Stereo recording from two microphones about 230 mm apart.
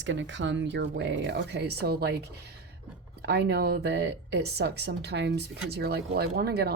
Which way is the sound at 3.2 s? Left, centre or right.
Right.